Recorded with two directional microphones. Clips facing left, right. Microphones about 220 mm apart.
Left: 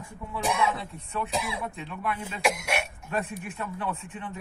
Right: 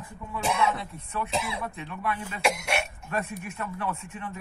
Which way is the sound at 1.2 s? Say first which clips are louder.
Even; 15° left (ahead or behind).